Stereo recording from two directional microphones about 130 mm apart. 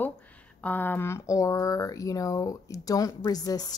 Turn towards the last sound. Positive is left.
turn(degrees=30)  # may be behind; listen again after turning